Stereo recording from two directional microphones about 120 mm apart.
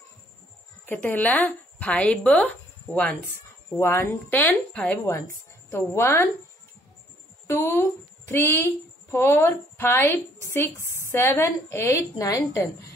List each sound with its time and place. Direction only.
0.8 s a woman's voice: 15° left (ahead or behind)
7.4 s a woman's voice: 20° left (ahead or behind)